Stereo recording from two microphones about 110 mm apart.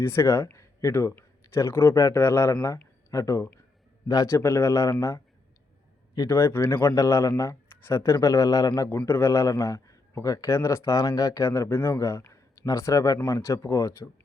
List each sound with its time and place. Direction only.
0.0 s speech: 25° left (ahead or behind)